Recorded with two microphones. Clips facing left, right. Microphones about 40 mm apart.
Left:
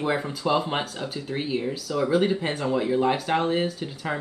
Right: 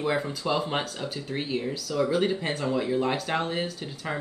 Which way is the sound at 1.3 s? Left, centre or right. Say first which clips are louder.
Left 3 dB; centre.